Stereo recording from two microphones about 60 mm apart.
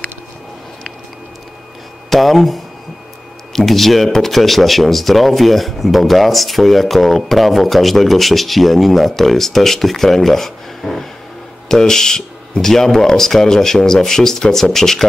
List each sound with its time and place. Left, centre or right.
2.0 s speech: centre